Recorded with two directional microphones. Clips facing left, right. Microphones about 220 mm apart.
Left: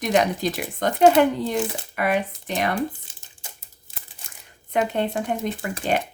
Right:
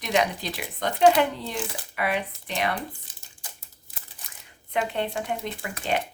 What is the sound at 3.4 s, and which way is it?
Crumpling, 25° left (ahead or behind).